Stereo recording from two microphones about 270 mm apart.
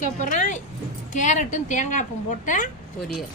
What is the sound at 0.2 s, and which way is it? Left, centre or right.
A woman's voice, left.